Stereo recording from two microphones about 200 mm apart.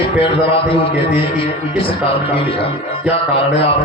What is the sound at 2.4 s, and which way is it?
Speech, 25° left (ahead or behind).